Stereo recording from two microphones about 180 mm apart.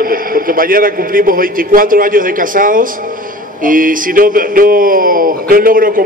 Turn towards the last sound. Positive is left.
turn(degrees=-50)  # may be behind; listen again after turning